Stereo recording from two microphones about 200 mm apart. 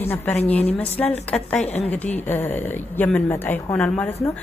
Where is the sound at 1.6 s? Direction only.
30° left (ahead or behind).